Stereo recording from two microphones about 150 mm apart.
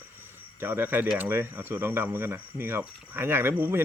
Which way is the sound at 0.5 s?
15° right (ahead or behind).